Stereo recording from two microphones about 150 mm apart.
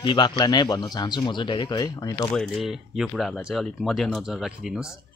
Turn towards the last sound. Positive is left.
turn(degrees=-5)  # may be behind; listen again after turning